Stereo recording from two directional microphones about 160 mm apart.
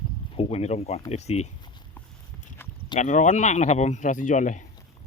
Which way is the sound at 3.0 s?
50° left (ahead or behind).